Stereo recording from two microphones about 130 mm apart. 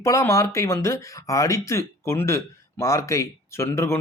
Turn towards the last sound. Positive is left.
turn(degrees=20)  # may be behind; listen again after turning